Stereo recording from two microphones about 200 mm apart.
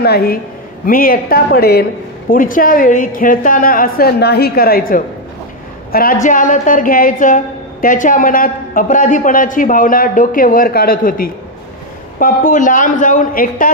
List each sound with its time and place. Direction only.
0.0 s a woman's voice: 50° left (ahead or behind)